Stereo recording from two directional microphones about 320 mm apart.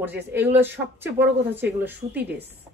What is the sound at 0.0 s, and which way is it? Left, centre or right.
Speech, centre.